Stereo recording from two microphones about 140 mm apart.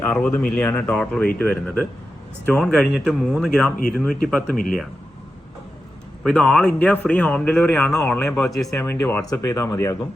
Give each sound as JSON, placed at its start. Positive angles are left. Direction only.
{"t": 0.0, "sound": "a man's voice", "side_deg": 10}
{"t": 6.2, "sound": "a man's voice", "side_deg": 5}
{"t": 8.8, "sound": "a man's voice", "side_deg": 15}